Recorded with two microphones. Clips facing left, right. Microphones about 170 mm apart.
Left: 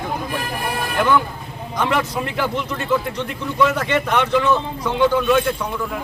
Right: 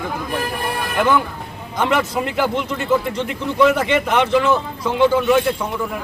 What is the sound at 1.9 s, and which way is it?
Speech, 10° right (ahead or behind).